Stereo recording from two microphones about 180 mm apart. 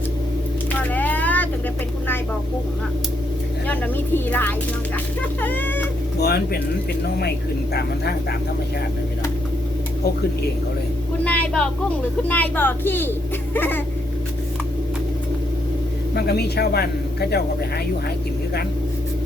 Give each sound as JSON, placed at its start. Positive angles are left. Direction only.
{"t": 0.8, "sound": "a sound", "side_deg": 10}
{"t": 3.7, "sound": "speech", "side_deg": 10}
{"t": 6.1, "sound": "speech", "side_deg": 60}
{"t": 7.7, "sound": "speech", "side_deg": 60}
{"t": 11.2, "sound": "vehicle", "side_deg": 5}
{"t": 12.3, "sound": "speech", "side_deg": 10}
{"t": 16.1, "sound": "speech", "side_deg": 65}